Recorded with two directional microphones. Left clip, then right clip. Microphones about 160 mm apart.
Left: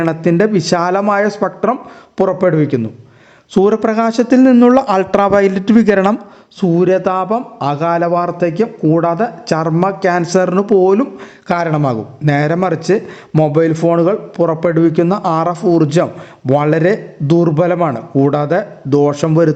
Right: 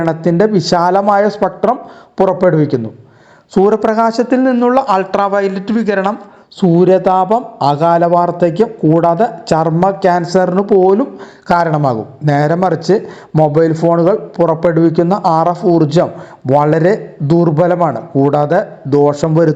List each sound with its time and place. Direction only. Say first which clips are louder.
0.0 s a man's voice: right 1 dB; 10° left (ahead or behind)
4.5 s a man's voice: left 1 dB; 35° left (ahead or behind)
6.7 s a man's voice: right 3 dB; centre (ahead or behind)
10.2 s a man's voice: right 1 dB; 15° left (ahead or behind)